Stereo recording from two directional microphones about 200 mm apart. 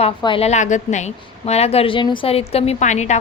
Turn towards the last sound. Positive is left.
turn(degrees=35)  # may be behind; listen again after turning